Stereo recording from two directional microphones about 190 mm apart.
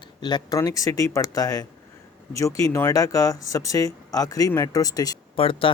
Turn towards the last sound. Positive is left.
turn(degrees=30)  # may be behind; listen again after turning